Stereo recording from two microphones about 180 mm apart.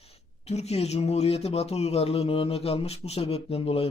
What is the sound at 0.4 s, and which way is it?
Speech, 35° left (ahead or behind).